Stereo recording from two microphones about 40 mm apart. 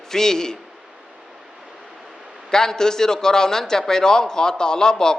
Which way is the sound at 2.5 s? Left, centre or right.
Centre.